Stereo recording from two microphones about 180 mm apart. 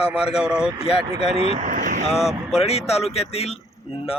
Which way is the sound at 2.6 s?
35° left (ahead or behind).